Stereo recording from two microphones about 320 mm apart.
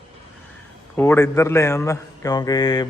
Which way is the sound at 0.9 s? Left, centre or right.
Centre.